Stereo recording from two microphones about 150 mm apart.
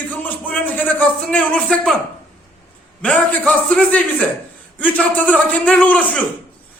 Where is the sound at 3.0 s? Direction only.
10° left (ahead or behind).